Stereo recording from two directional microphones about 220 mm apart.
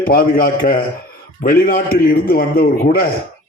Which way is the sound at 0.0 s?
40° left (ahead or behind).